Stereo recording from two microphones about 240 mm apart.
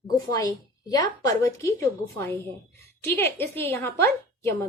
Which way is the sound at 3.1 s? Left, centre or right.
Centre.